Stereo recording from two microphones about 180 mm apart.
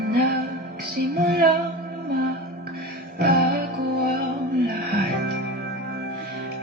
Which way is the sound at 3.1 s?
60° right (ahead or behind).